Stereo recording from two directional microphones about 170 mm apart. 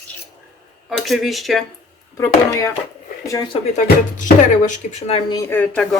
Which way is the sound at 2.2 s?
20° left (ahead or behind).